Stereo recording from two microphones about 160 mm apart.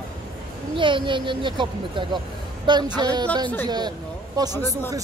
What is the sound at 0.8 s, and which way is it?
Speech, 30° right (ahead or behind).